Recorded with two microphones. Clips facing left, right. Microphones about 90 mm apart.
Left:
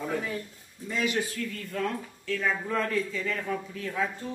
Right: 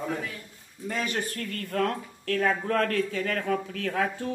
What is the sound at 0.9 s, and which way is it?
Speech, 45° right (ahead or behind).